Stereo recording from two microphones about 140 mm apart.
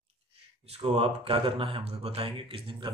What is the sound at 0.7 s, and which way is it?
A man's voice, 45° right (ahead or behind).